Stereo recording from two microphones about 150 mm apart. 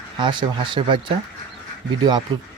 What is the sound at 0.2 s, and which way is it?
Speech, 30° right (ahead or behind).